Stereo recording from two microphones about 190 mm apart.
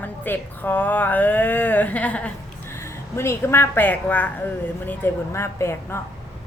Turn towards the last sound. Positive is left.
turn(degrees=15)  # may be behind; listen again after turning